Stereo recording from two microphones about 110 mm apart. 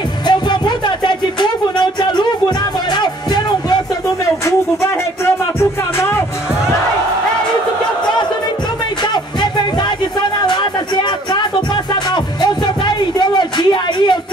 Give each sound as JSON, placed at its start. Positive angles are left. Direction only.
{"t": 0.3, "sound": "music", "side_deg": 45}
{"t": 5.2, "sound": "music", "side_deg": 25}
{"t": 9.0, "sound": "music", "side_deg": 40}
{"t": 11.7, "sound": "music", "side_deg": 40}